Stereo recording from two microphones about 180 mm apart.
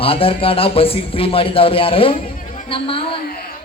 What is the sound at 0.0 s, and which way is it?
A man's voice, 30° left (ahead or behind).